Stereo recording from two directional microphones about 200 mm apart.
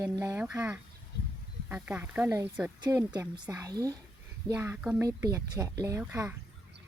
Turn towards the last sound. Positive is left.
turn(degrees=-15)  # may be behind; listen again after turning